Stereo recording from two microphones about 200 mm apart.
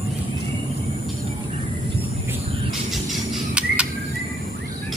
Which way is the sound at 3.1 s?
5° right (ahead or behind).